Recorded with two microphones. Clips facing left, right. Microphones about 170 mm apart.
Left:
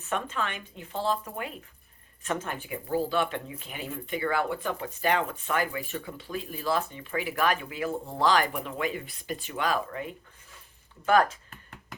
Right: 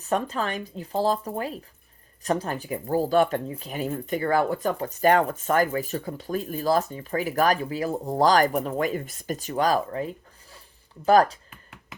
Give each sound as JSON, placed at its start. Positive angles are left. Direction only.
{"t": 0.0, "sound": "speech", "side_deg": -35}